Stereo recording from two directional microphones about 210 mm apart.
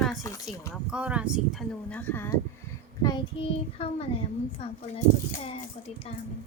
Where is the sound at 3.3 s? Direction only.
25° left (ahead or behind).